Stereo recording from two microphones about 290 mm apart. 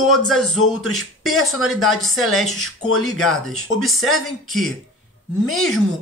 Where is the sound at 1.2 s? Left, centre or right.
Left.